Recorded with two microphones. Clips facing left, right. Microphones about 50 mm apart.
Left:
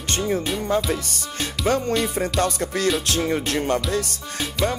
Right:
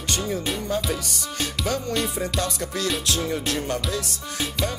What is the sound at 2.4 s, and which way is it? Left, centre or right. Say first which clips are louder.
Speech: left 5 dB; left.